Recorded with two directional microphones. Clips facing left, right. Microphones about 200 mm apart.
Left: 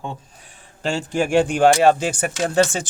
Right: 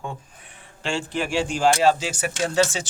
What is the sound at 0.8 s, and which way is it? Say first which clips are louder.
Speech: left 5 dB; 45° left (ahead or behind).